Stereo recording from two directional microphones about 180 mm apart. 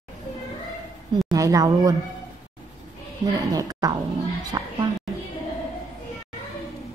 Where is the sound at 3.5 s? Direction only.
20° right (ahead or behind).